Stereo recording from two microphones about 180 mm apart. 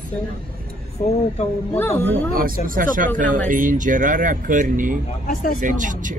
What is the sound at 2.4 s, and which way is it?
Speech, 50° right (ahead or behind).